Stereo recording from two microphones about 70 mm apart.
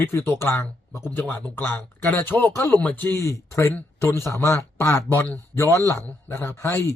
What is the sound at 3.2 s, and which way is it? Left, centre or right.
Speech, left.